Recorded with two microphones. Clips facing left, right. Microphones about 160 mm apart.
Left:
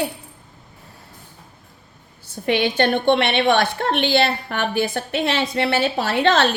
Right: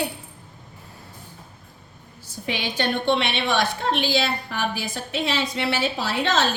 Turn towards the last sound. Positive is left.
turn(degrees=60)  # may be behind; listen again after turning